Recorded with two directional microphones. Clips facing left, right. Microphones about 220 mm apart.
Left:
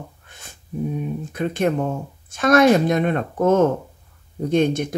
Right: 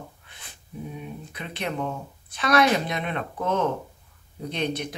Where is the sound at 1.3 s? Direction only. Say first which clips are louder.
Left 11 dB; 45° left (ahead or behind).